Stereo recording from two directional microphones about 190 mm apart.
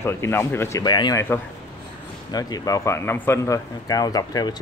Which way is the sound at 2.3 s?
20° left (ahead or behind).